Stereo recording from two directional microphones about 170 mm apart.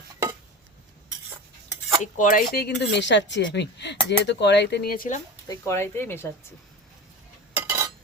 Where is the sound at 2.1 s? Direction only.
60° left (ahead or behind).